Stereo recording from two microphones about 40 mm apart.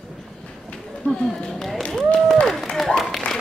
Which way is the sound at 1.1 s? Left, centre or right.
Centre.